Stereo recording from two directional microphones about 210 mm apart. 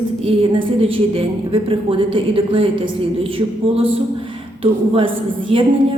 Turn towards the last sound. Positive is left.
turn(degrees=-25)  # may be behind; listen again after turning